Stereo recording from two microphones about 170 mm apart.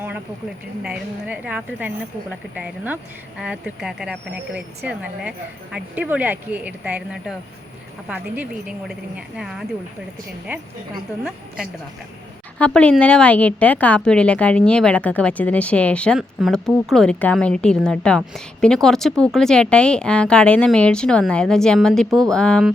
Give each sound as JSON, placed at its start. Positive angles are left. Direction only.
{"t": 0.8, "sound": "a woman's voice", "side_deg": -10}
{"t": 5.7, "sound": "a woman's voice", "side_deg": -10}
{"t": 11.2, "sound": "a woman's voice", "side_deg": -5}